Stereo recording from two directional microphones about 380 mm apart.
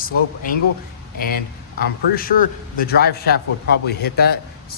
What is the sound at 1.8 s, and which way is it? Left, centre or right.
Speech, left.